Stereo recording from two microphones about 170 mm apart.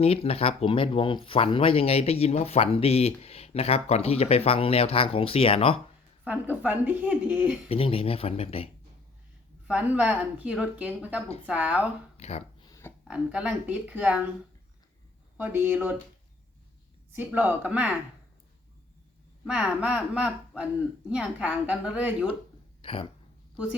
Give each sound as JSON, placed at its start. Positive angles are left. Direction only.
{"t": 0.0, "sound": "speech", "side_deg": 35}
{"t": 6.2, "sound": "speech", "side_deg": -10}
{"t": 7.7, "sound": "speech", "side_deg": 35}
{"t": 9.6, "sound": "speech", "side_deg": -5}
{"t": 12.1, "sound": "a sound", "side_deg": 40}
{"t": 12.6, "sound": "a sound", "side_deg": 20}
{"t": 13.1, "sound": "speech", "side_deg": -5}
{"t": 15.4, "sound": "speech", "side_deg": -10}
{"t": 17.1, "sound": "speech", "side_deg": -10}
{"t": 19.5, "sound": "speech", "side_deg": -5}
{"t": 22.8, "sound": "speech", "side_deg": 30}